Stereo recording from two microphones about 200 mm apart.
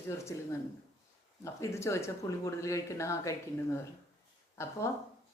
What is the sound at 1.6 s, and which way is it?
Speech, 15° left (ahead or behind).